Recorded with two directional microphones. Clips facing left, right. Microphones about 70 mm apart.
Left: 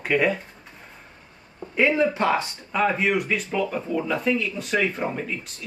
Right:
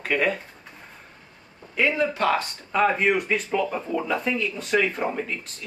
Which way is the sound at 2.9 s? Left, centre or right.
Centre.